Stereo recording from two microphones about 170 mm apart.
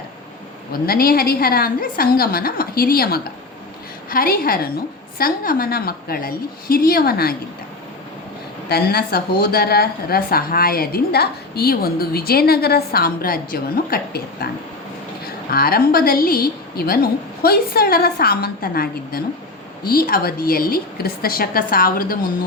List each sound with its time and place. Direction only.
0.7 s speech: 60° left (ahead or behind)
8.7 s speech: 65° left (ahead or behind)
15.5 s speech: 60° left (ahead or behind)